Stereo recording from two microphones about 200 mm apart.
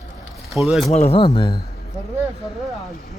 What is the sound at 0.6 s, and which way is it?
Speech, centre (ahead or behind).